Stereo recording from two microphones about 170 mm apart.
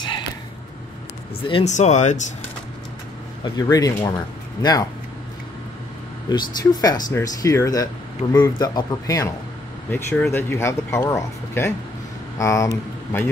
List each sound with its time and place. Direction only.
1.5 s speech: 40° left (ahead or behind)
3.6 s speech: 20° left (ahead or behind)
6.2 s speech: 25° left (ahead or behind)